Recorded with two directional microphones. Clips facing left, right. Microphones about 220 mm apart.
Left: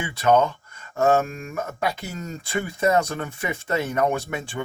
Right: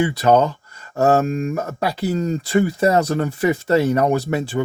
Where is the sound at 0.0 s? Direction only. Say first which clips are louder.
Right 4 dB; 35° right (ahead or behind).